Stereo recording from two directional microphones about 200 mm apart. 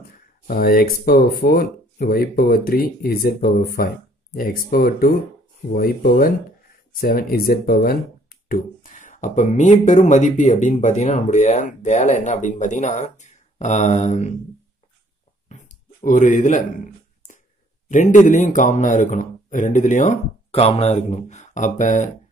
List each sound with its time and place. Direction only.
0.5 s speech: 50° left (ahead or behind)
15.4 s a sound: 35° left (ahead or behind)
17.8 s speech: 40° left (ahead or behind)